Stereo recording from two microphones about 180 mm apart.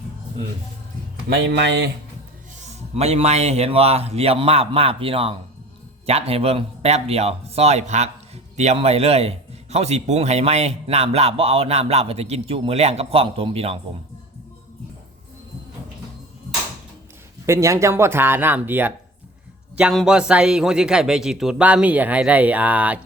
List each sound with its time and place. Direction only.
1.3 s speech: 70° right (ahead or behind)
2.6 s a man's voice: 35° right (ahead or behind)
17.4 s a man's voice: 15° right (ahead or behind)